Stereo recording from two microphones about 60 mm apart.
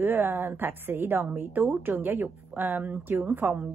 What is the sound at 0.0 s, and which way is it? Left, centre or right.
Speech, right.